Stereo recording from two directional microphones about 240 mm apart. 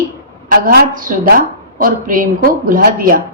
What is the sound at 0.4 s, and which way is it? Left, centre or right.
A woman's voice, right.